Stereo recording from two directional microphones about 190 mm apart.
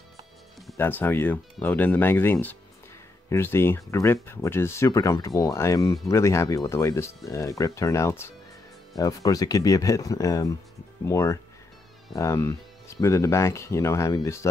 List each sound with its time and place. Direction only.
0.7 s speech: 10° left (ahead or behind)